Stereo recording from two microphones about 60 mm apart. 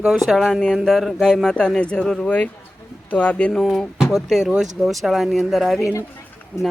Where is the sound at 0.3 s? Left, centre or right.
Centre.